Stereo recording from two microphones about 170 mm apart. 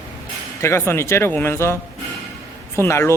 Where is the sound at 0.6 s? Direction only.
15° left (ahead or behind).